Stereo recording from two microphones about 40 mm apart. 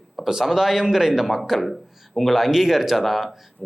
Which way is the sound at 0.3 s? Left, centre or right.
Centre.